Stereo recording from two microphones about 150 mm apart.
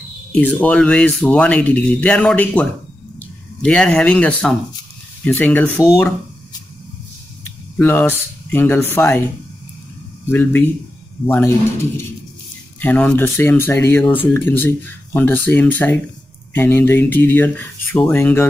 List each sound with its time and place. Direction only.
0.3 s speech: 10° left (ahead or behind)
3.6 s speech: 5° left (ahead or behind)
7.4 s speech: 15° left (ahead or behind)
10.3 s speech: 15° left (ahead or behind)
12.8 s speech: 10° left (ahead or behind)